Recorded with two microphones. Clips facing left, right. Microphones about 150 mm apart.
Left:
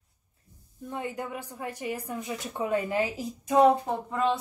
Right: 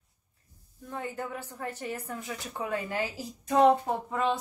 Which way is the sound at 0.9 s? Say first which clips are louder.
Left 2 dB; 15° left (ahead or behind).